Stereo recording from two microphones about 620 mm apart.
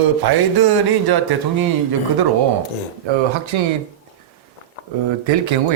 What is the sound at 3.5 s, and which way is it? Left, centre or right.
Speech, right.